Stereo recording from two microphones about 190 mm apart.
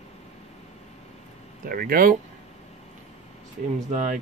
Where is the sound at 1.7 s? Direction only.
50° right (ahead or behind).